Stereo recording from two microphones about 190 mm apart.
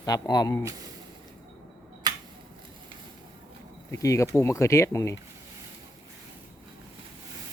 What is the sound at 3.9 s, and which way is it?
Speech, 15° left (ahead or behind).